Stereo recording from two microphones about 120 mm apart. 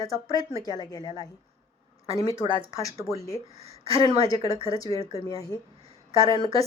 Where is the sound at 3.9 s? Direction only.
55° right (ahead or behind).